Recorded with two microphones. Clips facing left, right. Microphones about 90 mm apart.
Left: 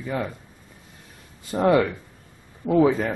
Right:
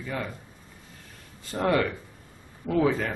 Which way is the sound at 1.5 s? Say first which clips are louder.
Left 5 dB; 15° left (ahead or behind).